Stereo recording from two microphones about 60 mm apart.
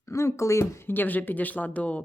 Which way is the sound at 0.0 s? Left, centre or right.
Left.